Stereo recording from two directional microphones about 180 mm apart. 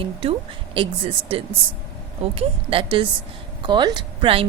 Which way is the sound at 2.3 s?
30° right (ahead or behind).